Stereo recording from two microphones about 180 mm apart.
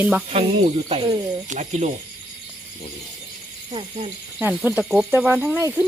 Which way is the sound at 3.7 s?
30° right (ahead or behind).